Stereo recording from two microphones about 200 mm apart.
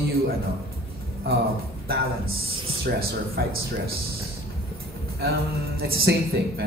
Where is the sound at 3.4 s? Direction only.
55° right (ahead or behind).